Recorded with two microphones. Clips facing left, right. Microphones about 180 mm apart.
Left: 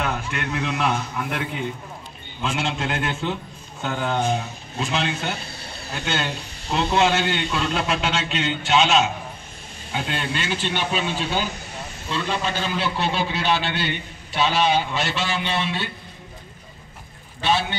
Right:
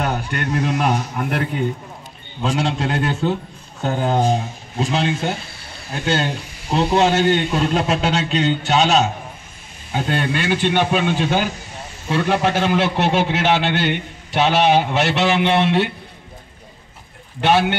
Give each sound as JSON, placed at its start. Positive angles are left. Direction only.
{"t": 0.0, "sound": "a man's voice", "side_deg": -35}
{"t": 2.4, "sound": "a man's voice", "side_deg": -35}
{"t": 6.7, "sound": "a man's voice", "side_deg": -35}
{"t": 12.1, "sound": "a man's voice", "side_deg": -65}
{"t": 17.4, "sound": "a man's voice", "side_deg": -65}